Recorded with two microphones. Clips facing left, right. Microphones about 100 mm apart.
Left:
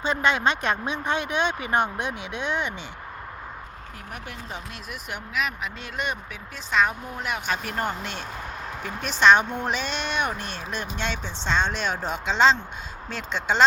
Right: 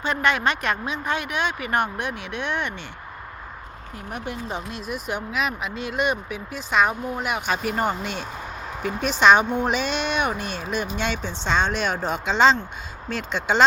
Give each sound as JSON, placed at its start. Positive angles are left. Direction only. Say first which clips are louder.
{"t": 0.0, "sound": "speech", "louder": "even", "side_deg": 20}
{"t": 4.1, "sound": "a woman's voice", "louder": "right 7 dB", "side_deg": -20}